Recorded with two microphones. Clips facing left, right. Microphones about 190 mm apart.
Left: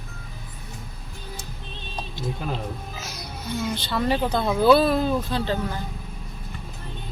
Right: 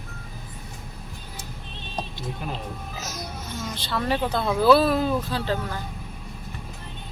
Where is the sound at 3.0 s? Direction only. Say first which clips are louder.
Right 2 dB; 40° right (ahead or behind).